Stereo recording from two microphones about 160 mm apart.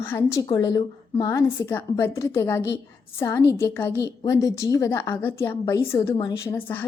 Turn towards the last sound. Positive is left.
turn(degrees=10)  # may be behind; listen again after turning